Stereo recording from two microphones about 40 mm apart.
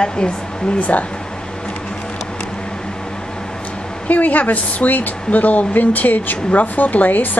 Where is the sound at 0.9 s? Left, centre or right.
Left.